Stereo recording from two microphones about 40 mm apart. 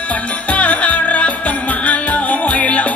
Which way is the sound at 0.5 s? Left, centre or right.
Left.